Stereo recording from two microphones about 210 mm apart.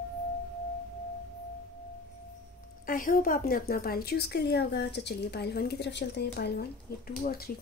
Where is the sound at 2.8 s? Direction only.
40° left (ahead or behind).